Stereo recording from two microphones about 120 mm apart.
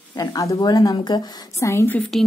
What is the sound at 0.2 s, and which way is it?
A woman's voice, 30° left (ahead or behind).